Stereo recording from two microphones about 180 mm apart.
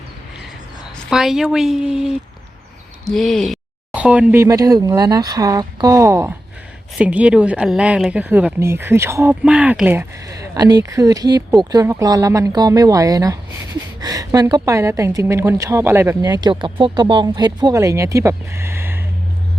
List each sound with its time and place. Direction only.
1.1 s speech: centre (ahead or behind)